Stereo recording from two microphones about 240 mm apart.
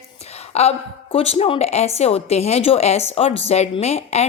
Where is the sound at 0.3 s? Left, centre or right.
Left.